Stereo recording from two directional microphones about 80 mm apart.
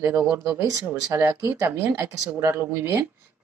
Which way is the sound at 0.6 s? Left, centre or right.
Right.